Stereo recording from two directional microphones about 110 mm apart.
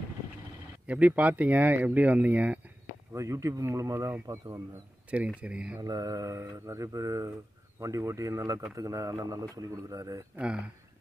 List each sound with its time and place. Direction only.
0.8 s speech: 15° right (ahead or behind)
3.1 s speech: 30° right (ahead or behind)
5.4 s speech: 10° right (ahead or behind)
5.8 s speech: 35° right (ahead or behind)
10.3 s speech: 10° right (ahead or behind)